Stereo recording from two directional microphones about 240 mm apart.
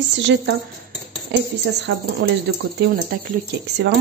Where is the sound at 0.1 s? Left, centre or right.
Right.